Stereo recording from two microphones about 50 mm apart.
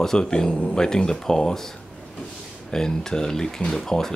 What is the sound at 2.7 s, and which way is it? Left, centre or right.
Speech, centre.